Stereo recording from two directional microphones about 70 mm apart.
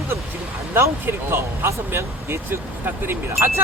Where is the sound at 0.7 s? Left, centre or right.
Right.